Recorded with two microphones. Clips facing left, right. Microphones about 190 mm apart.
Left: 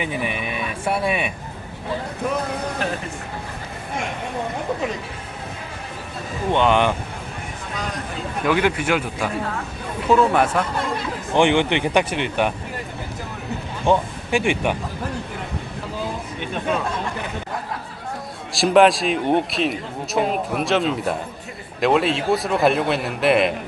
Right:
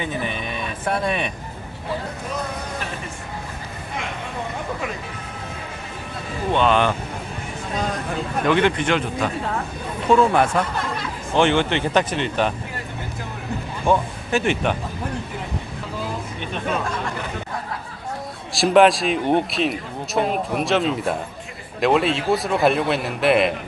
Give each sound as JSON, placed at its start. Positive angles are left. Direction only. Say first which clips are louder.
{"t": 0.0, "sound": "speech", "louder": "left 1 dB", "side_deg": 10}
{"t": 6.5, "sound": "speech", "louder": "left 1 dB", "side_deg": 15}
{"t": 8.4, "sound": "a man's voice", "louder": "right 1 dB", "side_deg": 10}
{"t": 11.3, "sound": "speech", "louder": "left 1 dB", "side_deg": 15}
{"t": 13.8, "sound": "speech", "louder": "left 1 dB", "side_deg": 15}
{"t": 18.5, "sound": "a man's voice", "louder": "even", "side_deg": 0}